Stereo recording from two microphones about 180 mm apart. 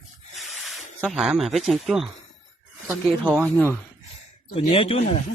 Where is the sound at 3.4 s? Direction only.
10° left (ahead or behind).